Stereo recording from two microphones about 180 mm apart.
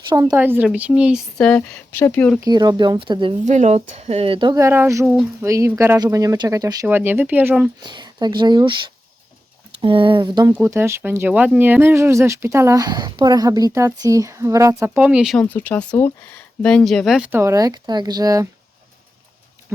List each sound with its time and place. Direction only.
0.1 s speech: 20° right (ahead or behind)
0.3 s speech: 10° right (ahead or behind); by 2.4 s 10° left (ahead or behind)
2.4 s speech: 20° right (ahead or behind)
3.4 s speech: 40° right (ahead or behind)
4.5 s speech: 15° right (ahead or behind)
7.8 s speech: 25° right (ahead or behind)
10.5 s speech: 15° right (ahead or behind)
14.9 s speech: 5° right (ahead or behind)